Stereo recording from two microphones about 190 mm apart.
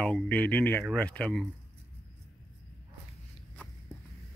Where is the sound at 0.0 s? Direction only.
5° left (ahead or behind).